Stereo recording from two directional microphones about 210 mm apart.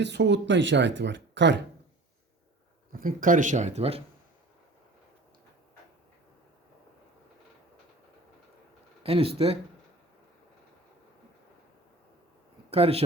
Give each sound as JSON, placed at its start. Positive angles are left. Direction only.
{"t": 0.0, "sound": "speech", "side_deg": -55}
{"t": 2.9, "sound": "speech", "side_deg": -40}
{"t": 9.0, "sound": "speech", "side_deg": -25}
{"t": 12.7, "sound": "speech", "side_deg": -30}